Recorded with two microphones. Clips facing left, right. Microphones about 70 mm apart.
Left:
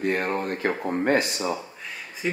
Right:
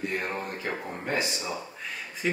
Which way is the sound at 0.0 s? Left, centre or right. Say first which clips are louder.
Left 6 dB; left.